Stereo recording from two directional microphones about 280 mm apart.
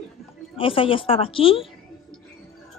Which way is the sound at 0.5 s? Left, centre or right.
Centre.